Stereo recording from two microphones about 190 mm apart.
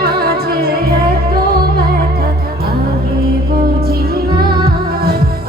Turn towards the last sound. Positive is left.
turn(degrees=-55)  # may be behind; listen again after turning